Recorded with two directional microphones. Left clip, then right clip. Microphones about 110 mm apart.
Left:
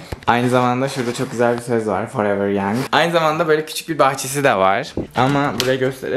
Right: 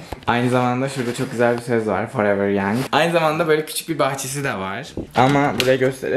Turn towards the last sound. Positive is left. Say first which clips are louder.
# right 1 dB
turn(degrees=-15)  # may be behind; listen again after turning